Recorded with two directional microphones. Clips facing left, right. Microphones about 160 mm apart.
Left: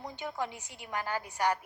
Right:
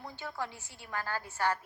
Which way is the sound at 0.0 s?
20° left (ahead or behind).